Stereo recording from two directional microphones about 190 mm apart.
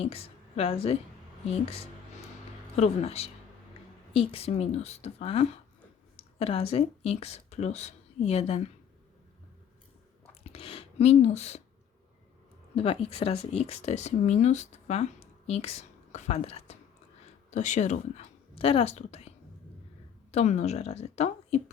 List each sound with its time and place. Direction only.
0.0 s a woman's voice: 30° left (ahead or behind)
10.4 s speech: 30° left (ahead or behind)
12.7 s speech: 30° left (ahead or behind)
20.3 s a woman's voice: 35° left (ahead or behind)